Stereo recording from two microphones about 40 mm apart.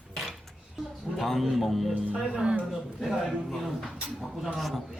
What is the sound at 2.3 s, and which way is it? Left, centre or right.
Speech, centre.